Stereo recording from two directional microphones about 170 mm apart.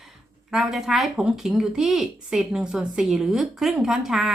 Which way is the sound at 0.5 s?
5° right (ahead or behind).